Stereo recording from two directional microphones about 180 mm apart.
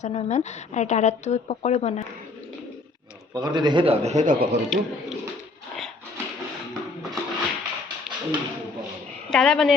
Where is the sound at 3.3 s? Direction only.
20° right (ahead or behind); by 4.6 s 45° right (ahead or behind).